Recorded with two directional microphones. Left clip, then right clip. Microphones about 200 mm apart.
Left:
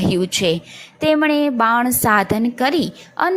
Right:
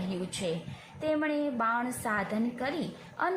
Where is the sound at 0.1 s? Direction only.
40° left (ahead or behind).